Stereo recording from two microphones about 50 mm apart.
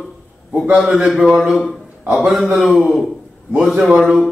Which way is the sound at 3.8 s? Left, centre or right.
Centre.